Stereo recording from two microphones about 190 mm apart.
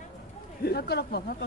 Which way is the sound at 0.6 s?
55° left (ahead or behind).